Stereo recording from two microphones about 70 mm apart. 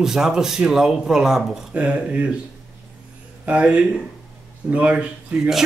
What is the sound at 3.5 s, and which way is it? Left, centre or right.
Speech, centre.